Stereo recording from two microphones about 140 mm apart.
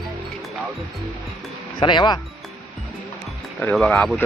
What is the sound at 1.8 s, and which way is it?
Speech, 35° left (ahead or behind).